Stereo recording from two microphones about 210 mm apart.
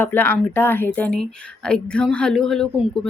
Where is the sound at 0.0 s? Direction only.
10° left (ahead or behind).